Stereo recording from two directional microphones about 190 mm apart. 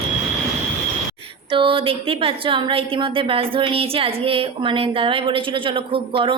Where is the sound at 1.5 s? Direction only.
30° right (ahead or behind).